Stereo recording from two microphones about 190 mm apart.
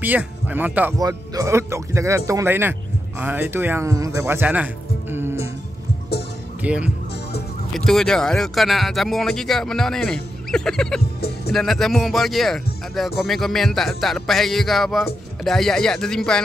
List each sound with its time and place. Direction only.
0.0 s speech: 10° right (ahead or behind)
5.1 s music: 15° right (ahead or behind)
6.6 s speech: 5° right (ahead or behind)
11.1 s music: 55° left (ahead or behind)
11.5 s speech: centre (ahead or behind)